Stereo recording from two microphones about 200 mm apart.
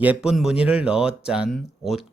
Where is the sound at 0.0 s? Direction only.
5° right (ahead or behind).